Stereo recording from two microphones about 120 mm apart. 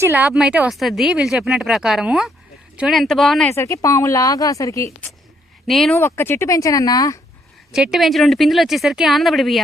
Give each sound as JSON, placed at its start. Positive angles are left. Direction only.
{"t": 0.0, "sound": "speech", "side_deg": -15}
{"t": 0.3, "sound": "speech", "side_deg": -5}
{"t": 3.5, "sound": "speech", "side_deg": 25}
{"t": 5.6, "sound": "speech", "side_deg": 0}
{"t": 5.9, "sound": "speech", "side_deg": 20}
{"t": 7.7, "sound": "speech", "side_deg": -5}